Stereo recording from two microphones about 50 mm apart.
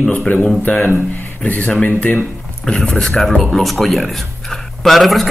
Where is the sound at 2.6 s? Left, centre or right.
Centre.